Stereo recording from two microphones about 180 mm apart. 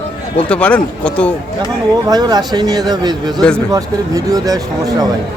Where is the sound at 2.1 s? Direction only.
20° right (ahead or behind).